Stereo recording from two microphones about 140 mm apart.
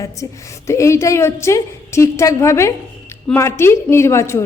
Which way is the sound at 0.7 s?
20° left (ahead or behind).